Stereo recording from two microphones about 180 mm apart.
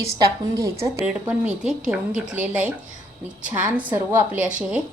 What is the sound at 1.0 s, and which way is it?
A woman's voice, 5° right (ahead or behind).